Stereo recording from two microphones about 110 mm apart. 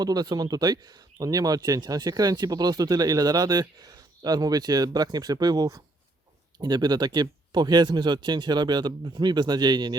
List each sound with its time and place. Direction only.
0.0 s speech: 35° right (ahead or behind)